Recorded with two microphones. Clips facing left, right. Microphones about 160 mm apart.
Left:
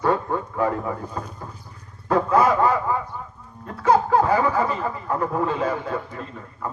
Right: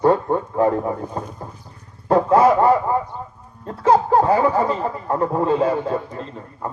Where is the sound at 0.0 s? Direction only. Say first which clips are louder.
Right 5 dB; 35° right (ahead or behind).